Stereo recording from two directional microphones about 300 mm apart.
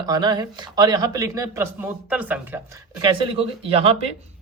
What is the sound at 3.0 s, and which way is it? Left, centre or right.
Speech, centre.